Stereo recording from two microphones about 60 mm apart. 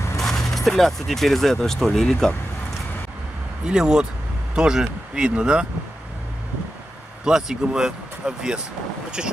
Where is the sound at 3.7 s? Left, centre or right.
Centre.